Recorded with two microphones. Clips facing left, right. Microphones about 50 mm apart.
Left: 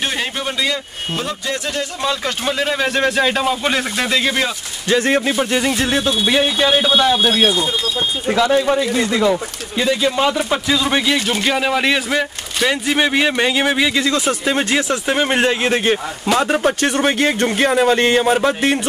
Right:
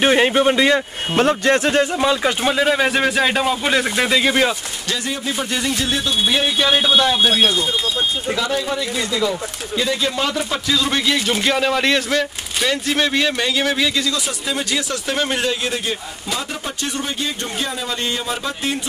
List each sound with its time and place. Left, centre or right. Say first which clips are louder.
0.0 s a man's voice: right 8 dB; right
1.1 s speech: right 8 dB; right
2.0 s a man's voice: right 3 dB; centre
5.0 s speech: left 8 dB; left
5.3 s speech: left 5 dB; centre
5.8 s speech: left 3 dB; left
6.7 s a man's voice: even; centre
8.3 s speech: left 6 dB; left
9.8 s speech: left 6 dB; centre
14.1 s a man's voice: left 6 dB; left